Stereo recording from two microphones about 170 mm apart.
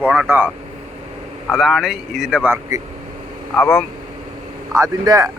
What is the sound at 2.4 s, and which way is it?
Speech, 15° right (ahead or behind).